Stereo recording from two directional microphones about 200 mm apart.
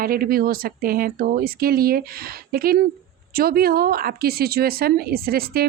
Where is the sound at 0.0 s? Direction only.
45° right (ahead or behind).